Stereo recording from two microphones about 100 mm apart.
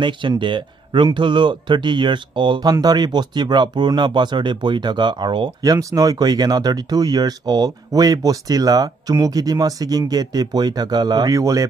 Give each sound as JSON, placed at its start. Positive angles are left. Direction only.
{"t": 0.0, "sound": "speech", "side_deg": -55}
{"t": 2.7, "sound": "speech", "side_deg": -40}
{"t": 5.6, "sound": "speech", "side_deg": -35}